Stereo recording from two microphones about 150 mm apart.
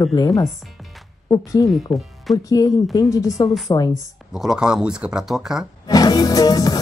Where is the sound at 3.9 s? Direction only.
5° right (ahead or behind).